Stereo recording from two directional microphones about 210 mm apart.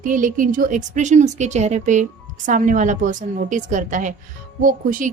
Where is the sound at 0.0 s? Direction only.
40° right (ahead or behind).